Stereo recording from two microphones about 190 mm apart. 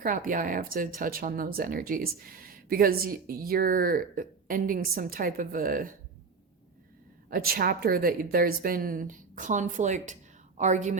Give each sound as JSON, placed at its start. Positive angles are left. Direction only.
{"t": 0.0, "sound": "speech", "side_deg": -45}
{"t": 7.3, "sound": "a woman's voice", "side_deg": -50}